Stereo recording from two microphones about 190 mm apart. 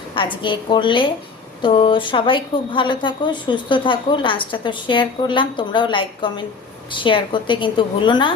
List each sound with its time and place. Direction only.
0.1 s a woman's voice: 25° left (ahead or behind)